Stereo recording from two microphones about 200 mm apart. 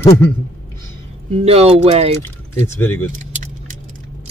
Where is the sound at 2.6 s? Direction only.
15° left (ahead or behind).